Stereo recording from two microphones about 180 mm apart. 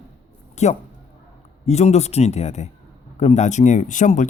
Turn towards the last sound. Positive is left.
turn(degrees=45)  # may be behind; listen again after turning